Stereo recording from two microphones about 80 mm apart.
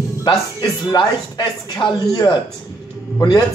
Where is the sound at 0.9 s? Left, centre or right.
Left.